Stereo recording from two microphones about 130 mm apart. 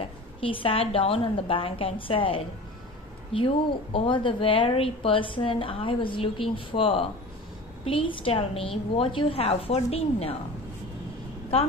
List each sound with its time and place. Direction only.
0.0 s a woman's voice: 45° left (ahead or behind)